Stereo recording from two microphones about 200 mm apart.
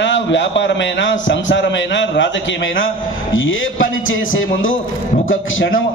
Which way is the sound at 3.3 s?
80° left.